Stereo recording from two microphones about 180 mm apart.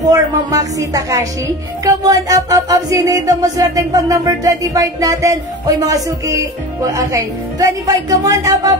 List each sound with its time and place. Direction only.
0.1 s music: 20° right (ahead or behind)